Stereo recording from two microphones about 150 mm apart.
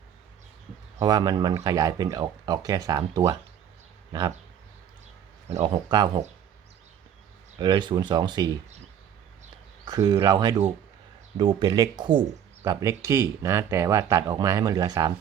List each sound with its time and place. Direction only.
0.9 s speech: 25° right (ahead or behind)
5.6 s speech: 30° right (ahead or behind)
7.6 s speech: 30° right (ahead or behind)
9.8 s speech: 25° right (ahead or behind)